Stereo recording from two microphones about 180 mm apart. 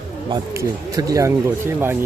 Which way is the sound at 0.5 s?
15° right (ahead or behind).